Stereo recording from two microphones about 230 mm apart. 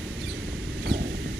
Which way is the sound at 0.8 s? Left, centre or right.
Right.